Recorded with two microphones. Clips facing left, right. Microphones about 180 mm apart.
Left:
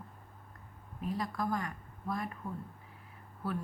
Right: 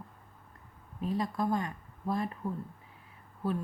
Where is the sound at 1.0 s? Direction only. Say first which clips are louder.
Right 4 dB; 25° right (ahead or behind).